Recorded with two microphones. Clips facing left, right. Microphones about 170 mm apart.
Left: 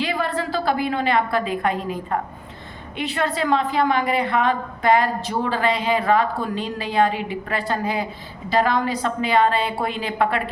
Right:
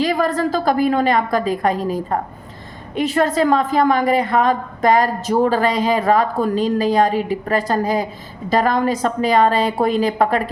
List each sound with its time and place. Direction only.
0.0 s a woman's voice: 40° right (ahead or behind)